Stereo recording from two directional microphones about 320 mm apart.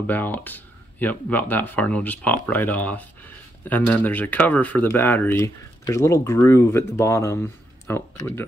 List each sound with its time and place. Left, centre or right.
0.0 s speech: centre